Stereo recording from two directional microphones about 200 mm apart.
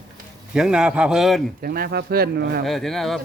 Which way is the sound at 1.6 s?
50° right (ahead or behind).